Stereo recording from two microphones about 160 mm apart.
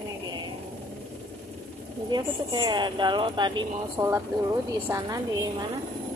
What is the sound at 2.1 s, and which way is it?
Speech, 25° right (ahead or behind).